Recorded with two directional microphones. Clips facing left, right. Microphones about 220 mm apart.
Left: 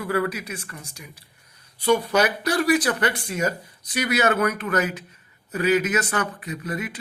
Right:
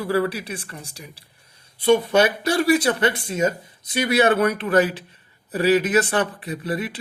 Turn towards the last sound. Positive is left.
turn(degrees=-30)  # may be behind; listen again after turning